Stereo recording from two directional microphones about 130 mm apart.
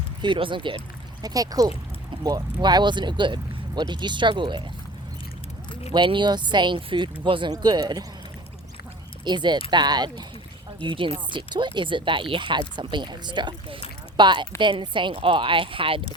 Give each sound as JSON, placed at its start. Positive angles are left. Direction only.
{"t": 0.2, "sound": "speech", "side_deg": -40}
{"t": 1.2, "sound": "speech", "side_deg": -30}
{"t": 5.9, "sound": "speech", "side_deg": -35}
{"t": 9.2, "sound": "speech", "side_deg": -35}